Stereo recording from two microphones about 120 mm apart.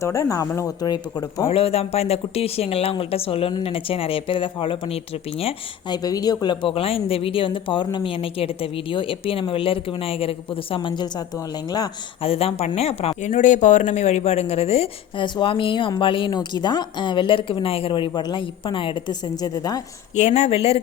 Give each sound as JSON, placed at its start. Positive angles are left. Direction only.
{"t": 0.0, "sound": "speech", "side_deg": 25}
{"t": 1.5, "sound": "speech", "side_deg": 55}
{"t": 5.9, "sound": "speech", "side_deg": 30}
{"t": 12.2, "sound": "speech", "side_deg": 50}
{"t": 18.1, "sound": "speech", "side_deg": 35}
{"t": 19.4, "sound": "a woman's voice", "side_deg": 30}
{"t": 20.1, "sound": "speech", "side_deg": 70}